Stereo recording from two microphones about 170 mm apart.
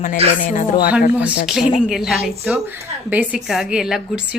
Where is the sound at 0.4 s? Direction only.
50° left (ahead or behind).